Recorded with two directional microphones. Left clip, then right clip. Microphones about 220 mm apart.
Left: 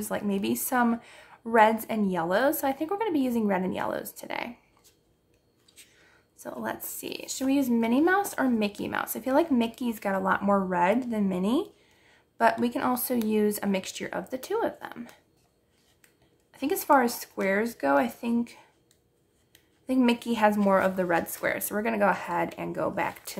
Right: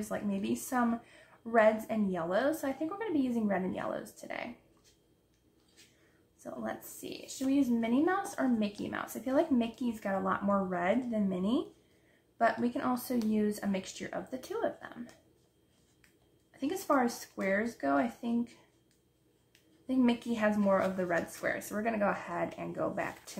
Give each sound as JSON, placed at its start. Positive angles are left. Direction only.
{"t": 0.1, "sound": "speech", "side_deg": 45}
{"t": 6.3, "sound": "speech", "side_deg": 45}
{"t": 16.5, "sound": "speech", "side_deg": 45}
{"t": 19.9, "sound": "speech", "side_deg": 45}